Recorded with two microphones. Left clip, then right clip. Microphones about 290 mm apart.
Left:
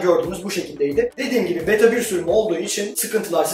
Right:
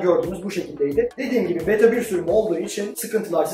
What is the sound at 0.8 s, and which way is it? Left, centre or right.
A man's voice, centre.